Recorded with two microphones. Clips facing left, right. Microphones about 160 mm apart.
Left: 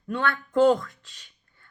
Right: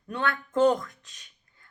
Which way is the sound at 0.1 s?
20° right (ahead or behind).